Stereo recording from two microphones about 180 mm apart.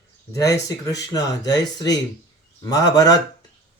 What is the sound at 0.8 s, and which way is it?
Speech, 20° left (ahead or behind).